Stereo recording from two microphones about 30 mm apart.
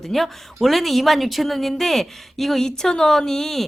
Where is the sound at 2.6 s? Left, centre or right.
Centre.